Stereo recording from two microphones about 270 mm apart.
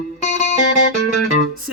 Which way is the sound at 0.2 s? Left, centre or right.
Left.